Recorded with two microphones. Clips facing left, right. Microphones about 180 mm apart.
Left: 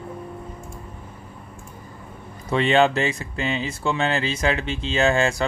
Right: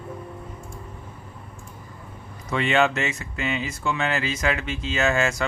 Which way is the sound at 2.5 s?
30° left (ahead or behind).